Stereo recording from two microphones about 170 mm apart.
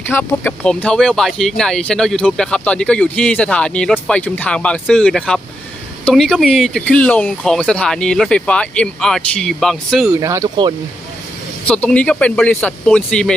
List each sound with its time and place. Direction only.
0.1 s speech: 10° left (ahead or behind)
10.2 s speech: 20° right (ahead or behind)
11.7 s speech: 5° left (ahead or behind)